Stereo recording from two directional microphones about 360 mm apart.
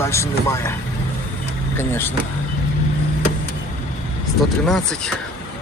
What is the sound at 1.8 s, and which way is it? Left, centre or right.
Speech, centre.